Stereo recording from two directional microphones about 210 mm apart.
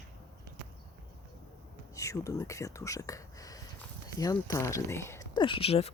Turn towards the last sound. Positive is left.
turn(degrees=30)  # may be behind; listen again after turning